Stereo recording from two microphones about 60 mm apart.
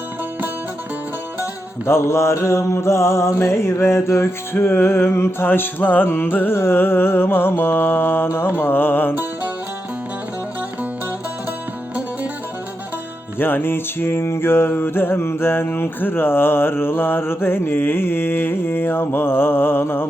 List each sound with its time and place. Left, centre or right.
1.9 s mantra: left
5.5 s music: left
13.4 s music: left